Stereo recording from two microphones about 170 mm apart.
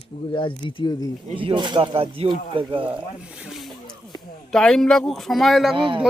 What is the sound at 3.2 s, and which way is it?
Snake, 5° right (ahead or behind).